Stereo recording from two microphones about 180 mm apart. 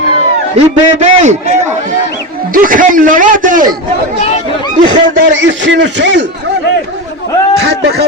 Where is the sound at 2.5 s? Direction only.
50° right (ahead or behind).